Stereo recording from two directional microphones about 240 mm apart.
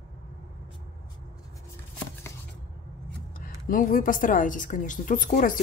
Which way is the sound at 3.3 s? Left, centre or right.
Left.